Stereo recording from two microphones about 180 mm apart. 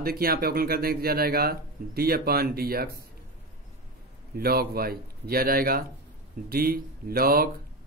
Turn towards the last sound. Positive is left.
turn(degrees=-55)  # may be behind; listen again after turning